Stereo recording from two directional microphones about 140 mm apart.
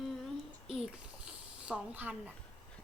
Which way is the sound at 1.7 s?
10° right (ahead or behind).